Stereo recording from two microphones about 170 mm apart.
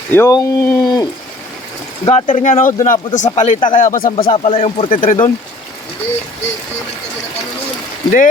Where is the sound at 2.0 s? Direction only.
45° left (ahead or behind).